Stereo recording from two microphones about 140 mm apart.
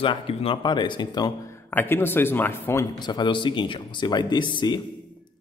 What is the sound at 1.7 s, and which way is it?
A man's voice, 15° left (ahead or behind).